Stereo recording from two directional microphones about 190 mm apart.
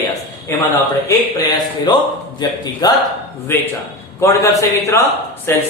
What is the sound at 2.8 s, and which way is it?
Speech, 20° left (ahead or behind).